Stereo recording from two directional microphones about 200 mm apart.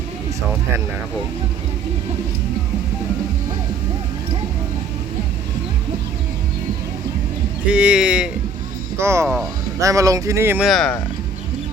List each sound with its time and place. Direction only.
7.7 s speech: 5° right (ahead or behind)
9.2 s speech: centre (ahead or behind)
9.7 s speech: 15° right (ahead or behind)
10.7 s speech: 5° left (ahead or behind)